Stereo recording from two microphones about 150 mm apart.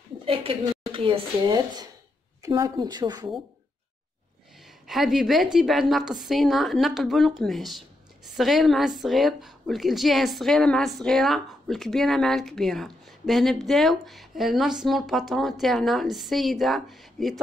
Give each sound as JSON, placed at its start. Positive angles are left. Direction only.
{"t": 0.2, "sound": "speech", "side_deg": -40}
{"t": 4.8, "sound": "a woman's voice", "side_deg": 0}